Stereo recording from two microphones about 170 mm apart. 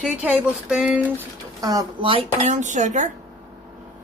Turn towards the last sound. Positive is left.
turn(degrees=-45)  # may be behind; listen again after turning